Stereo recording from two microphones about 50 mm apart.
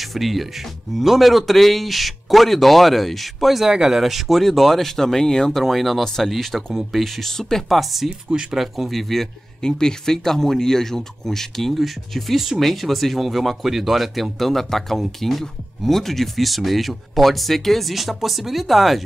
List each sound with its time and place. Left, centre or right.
0.1 s speech: centre
3.7 s speech: centre
4.0 s speech: centre
5.6 s speech: centre
8.3 s speech: right
8.5 s speech: centre